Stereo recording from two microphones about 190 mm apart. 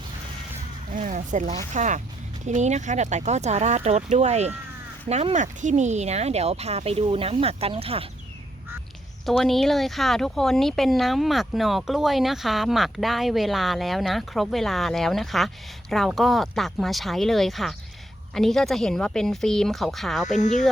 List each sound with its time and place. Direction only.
0.9 s speech: 40° right (ahead or behind)
9.4 s speech: centre (ahead or behind)